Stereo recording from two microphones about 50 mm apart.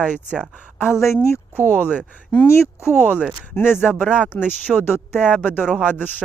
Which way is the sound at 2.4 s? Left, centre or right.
Left.